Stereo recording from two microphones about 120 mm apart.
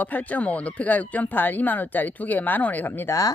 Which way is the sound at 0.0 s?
15° left (ahead or behind).